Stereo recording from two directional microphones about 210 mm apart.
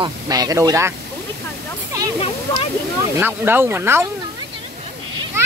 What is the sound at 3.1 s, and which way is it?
Speech, 10° right (ahead or behind).